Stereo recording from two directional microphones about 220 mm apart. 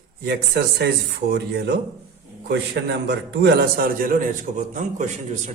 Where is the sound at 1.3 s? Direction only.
50° right (ahead or behind).